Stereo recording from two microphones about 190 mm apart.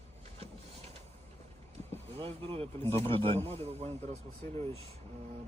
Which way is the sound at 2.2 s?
30° right (ahead or behind).